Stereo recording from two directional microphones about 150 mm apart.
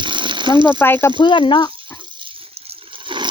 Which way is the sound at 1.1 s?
35° left (ahead or behind).